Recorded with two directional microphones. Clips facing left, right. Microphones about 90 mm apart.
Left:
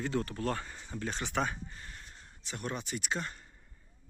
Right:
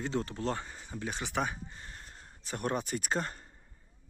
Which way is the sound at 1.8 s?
35° right (ahead or behind).